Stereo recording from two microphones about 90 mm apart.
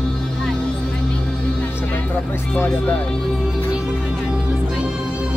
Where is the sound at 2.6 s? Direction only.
20° left (ahead or behind).